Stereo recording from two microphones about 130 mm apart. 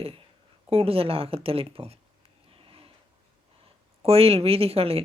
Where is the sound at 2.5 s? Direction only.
45° right (ahead or behind).